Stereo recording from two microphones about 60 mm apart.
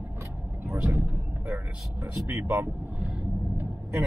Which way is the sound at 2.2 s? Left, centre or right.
Right.